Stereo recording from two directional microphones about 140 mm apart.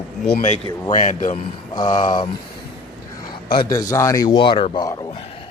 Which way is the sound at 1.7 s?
30° left (ahead or behind).